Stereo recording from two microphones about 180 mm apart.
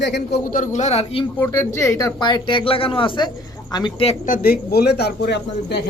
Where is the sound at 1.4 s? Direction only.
15° left (ahead or behind).